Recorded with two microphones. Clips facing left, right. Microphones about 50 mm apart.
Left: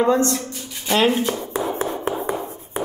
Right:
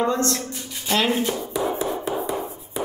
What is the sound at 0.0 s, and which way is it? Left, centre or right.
Speech, centre.